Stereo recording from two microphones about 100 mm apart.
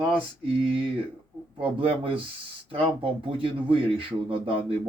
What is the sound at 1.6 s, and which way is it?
Speech, 60° right (ahead or behind).